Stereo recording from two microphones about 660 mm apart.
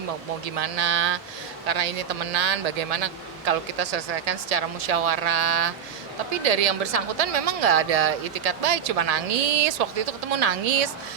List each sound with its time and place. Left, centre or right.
0.4 s a woman's voice: right